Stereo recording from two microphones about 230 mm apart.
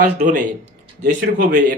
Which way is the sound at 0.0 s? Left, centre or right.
Right.